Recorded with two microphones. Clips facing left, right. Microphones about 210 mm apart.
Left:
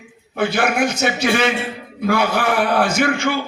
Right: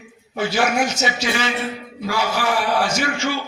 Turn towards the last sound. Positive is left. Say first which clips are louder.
# left 4 dB
turn(degrees=55)  # may be behind; listen again after turning